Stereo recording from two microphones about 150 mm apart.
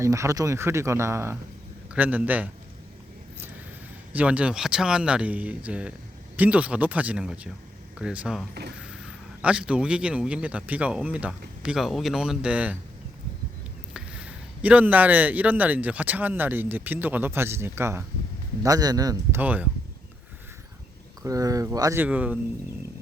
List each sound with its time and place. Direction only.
0.0 s speech: 20° right (ahead or behind)
4.1 s speech: 10° right (ahead or behind)
9.4 s speech: 10° right (ahead or behind)
13.9 s speech: 5° right (ahead or behind); by 19.4 s 25° right (ahead or behind)
19.4 s speech: 10° right (ahead or behind)
21.2 s speech: 25° right (ahead or behind)